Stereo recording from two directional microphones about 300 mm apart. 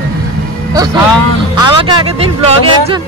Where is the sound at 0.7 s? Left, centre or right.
Centre.